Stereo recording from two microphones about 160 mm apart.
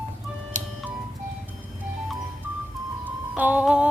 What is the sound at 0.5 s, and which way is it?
Music, 50° right (ahead or behind).